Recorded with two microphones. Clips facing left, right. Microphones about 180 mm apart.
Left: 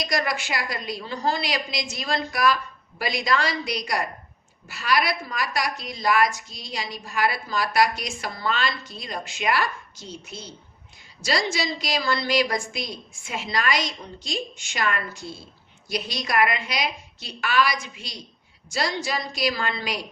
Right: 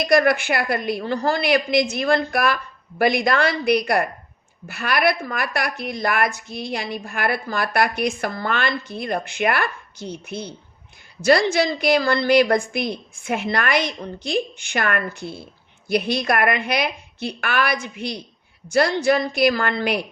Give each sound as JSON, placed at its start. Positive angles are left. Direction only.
{"t": 0.0, "sound": "a woman's voice", "side_deg": -60}